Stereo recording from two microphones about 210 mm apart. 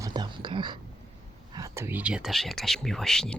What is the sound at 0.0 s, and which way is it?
Whispering, 20° right (ahead or behind).